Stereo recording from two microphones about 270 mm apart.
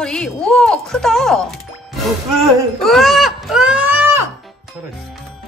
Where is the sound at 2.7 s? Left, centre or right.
Centre.